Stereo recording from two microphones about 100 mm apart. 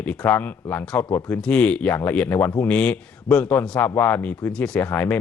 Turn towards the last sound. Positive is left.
turn(degrees=15)  # may be behind; listen again after turning